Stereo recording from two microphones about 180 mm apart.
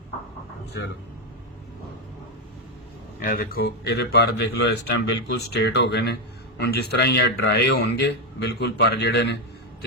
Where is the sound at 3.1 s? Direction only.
55° left (ahead or behind).